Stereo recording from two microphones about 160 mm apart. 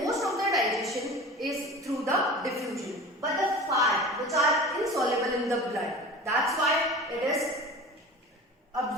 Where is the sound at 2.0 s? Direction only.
20° right (ahead or behind).